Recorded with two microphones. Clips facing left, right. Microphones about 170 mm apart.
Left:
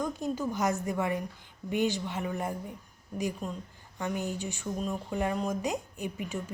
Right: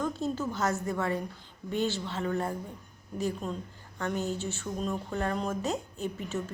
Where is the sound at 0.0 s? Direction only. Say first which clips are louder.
Even; 15° left (ahead or behind).